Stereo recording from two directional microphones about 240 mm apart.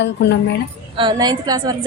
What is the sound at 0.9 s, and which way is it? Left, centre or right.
Speech, centre.